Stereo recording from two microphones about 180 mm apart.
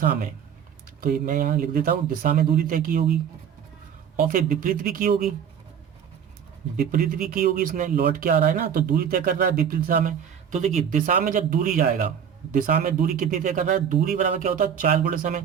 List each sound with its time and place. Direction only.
1.0 s speech: 50° right (ahead or behind)
4.2 s speech: 50° right (ahead or behind)
6.7 s speech: 50° right (ahead or behind)